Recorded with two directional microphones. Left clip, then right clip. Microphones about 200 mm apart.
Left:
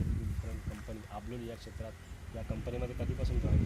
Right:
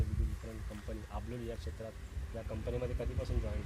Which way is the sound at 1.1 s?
15° right (ahead or behind).